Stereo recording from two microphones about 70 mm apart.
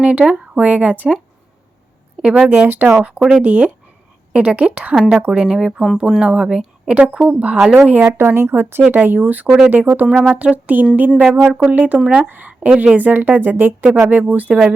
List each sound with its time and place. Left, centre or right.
0.0 s a woman's voice: centre
2.2 s speech: centre
2.5 s a woman's voice: right
2.9 s speech: centre
3.4 s a woman's voice: right
7.9 s a woman's voice: right
10.1 s a woman's voice: centre